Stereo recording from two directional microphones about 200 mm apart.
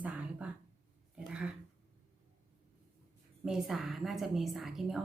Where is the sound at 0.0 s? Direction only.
5° right (ahead or behind).